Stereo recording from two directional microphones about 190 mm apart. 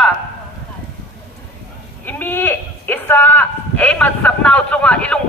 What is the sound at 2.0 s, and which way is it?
Speech, 10° left (ahead or behind).